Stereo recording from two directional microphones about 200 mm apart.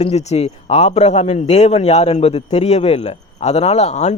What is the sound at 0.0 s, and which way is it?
A man's voice, 30° left (ahead or behind).